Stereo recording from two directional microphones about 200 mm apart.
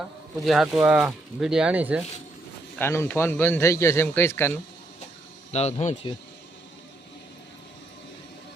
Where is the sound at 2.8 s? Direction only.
10° left (ahead or behind).